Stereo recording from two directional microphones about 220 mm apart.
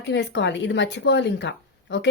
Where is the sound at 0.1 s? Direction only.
50° left (ahead or behind).